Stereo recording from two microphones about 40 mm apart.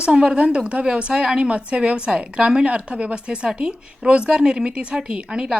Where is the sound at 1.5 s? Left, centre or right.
Right.